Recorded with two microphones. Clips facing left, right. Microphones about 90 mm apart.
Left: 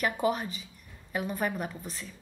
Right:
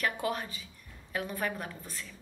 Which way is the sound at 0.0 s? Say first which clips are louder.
Left 4 dB; 15° left (ahead or behind).